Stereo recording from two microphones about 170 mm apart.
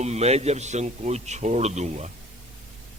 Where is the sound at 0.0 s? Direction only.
40° right (ahead or behind).